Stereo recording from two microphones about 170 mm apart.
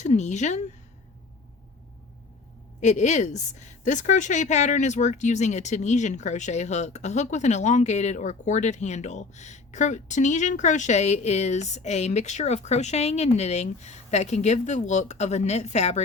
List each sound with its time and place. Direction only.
0.0 s a woman's voice: 45° left (ahead or behind)
2.8 s a woman's voice: 45° left (ahead or behind)